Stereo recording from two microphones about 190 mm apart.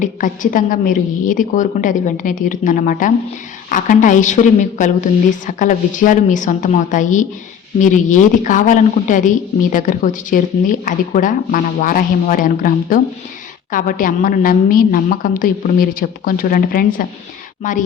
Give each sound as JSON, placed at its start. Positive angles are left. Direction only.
{"t": 0.0, "sound": "a woman's voice", "side_deg": 45}